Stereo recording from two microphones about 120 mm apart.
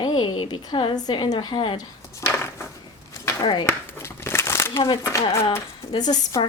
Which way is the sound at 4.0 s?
20° left (ahead or behind).